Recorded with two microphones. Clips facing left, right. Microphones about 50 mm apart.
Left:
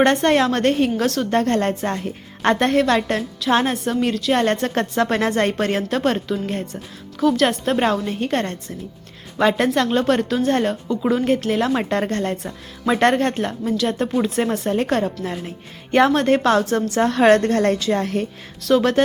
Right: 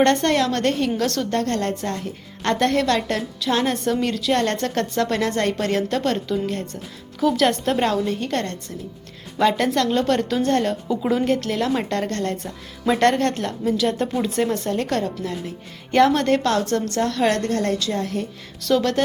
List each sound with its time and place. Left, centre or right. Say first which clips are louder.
0.0 s a woman's voice: left 2 dB; centre
1.0 s a woman's voice: left 2 dB; centre
1.3 s a woman's voice: left 4 dB; left
3.8 s a woman's voice: left 1 dB; centre
7.2 s a woman's voice: left 1 dB; centre
11.3 s a woman's voice: left 2 dB; centre
13.7 s a woman's voice: right 2 dB; centre
14.7 s a woman's voice: left 3 dB; left
15.9 s a woman's voice: left 1 dB; centre
17.0 s a woman's voice: left 8 dB; left
18.0 s a woman's voice: left 3 dB; left
18.7 s a woman's voice: left 3 dB; centre